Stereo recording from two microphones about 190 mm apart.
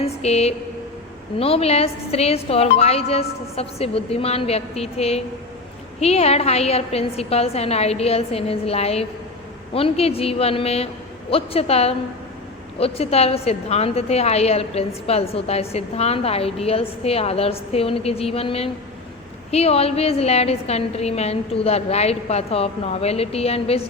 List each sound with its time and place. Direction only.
0.0 s a woman's voice: 35° left (ahead or behind)